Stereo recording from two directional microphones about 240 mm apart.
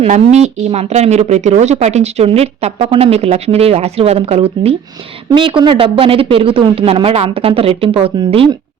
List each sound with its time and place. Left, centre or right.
0.0 s speech: right